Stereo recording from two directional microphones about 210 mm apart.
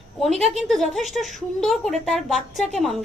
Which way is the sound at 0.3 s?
Centre (ahead or behind).